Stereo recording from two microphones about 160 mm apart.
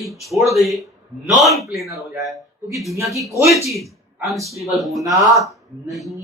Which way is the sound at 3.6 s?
Centre (ahead or behind).